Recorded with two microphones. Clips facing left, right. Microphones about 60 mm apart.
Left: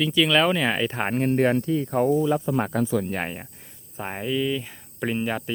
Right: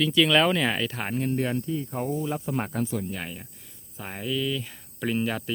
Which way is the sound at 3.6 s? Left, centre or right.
Left.